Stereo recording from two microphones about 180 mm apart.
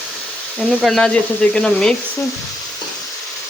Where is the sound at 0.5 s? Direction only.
Centre (ahead or behind).